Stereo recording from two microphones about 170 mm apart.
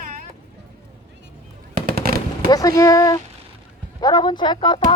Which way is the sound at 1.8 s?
60° right (ahead or behind).